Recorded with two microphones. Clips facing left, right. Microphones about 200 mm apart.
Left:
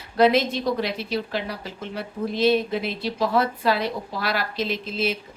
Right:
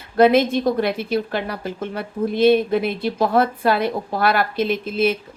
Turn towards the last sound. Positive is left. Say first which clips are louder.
# right 6 dB
turn(degrees=-55)  # may be behind; listen again after turning